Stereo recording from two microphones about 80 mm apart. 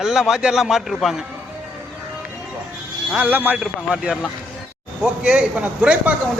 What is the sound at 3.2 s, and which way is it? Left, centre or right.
Speech, right.